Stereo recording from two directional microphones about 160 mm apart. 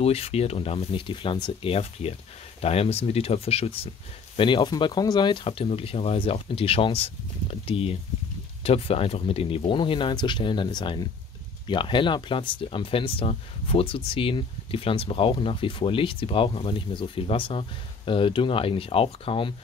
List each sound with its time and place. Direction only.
0.0 s speech: 40° left (ahead or behind)